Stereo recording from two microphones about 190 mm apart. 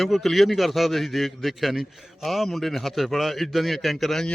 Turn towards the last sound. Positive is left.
turn(degrees=0)  # may be behind; listen again after turning